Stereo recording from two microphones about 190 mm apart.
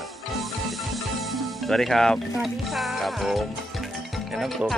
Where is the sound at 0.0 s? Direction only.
Centre (ahead or behind).